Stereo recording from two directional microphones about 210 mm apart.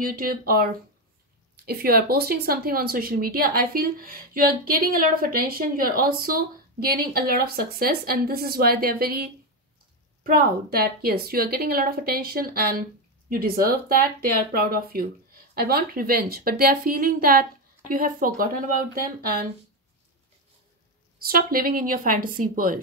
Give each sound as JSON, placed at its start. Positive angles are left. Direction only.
{"t": 0.0, "sound": "speech", "side_deg": -45}
{"t": 1.7, "sound": "speech", "side_deg": -45}
{"t": 21.3, "sound": "speech", "side_deg": -45}